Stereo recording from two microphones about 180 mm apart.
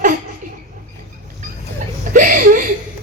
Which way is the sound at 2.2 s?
50° right (ahead or behind).